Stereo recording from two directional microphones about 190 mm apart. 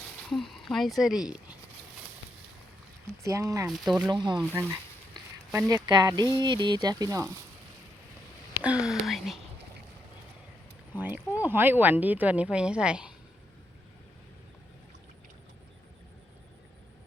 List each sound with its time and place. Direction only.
0.3 s speech: centre (ahead or behind)
3.2 s speech: 15° right (ahead or behind)
3.7 s speech: centre (ahead or behind)
4.1 s speech: 25° right (ahead or behind)
8.5 s speech: 5° right (ahead or behind)
10.9 s speech: 10° right (ahead or behind)